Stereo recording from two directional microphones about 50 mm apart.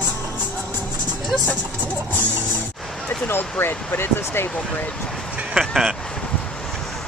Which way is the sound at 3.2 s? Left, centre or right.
Left.